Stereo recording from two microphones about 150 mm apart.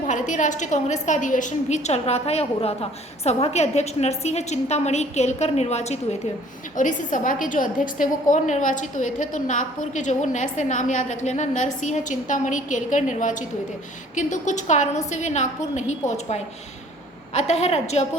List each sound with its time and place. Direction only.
0.1 s a woman's voice: 55° left (ahead or behind)
6.7 s a woman's voice: 60° left (ahead or behind)